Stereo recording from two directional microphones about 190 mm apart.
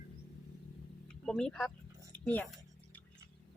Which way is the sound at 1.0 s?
5° left (ahead or behind).